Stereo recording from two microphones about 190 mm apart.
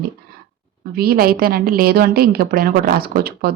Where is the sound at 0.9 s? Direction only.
50° right (ahead or behind).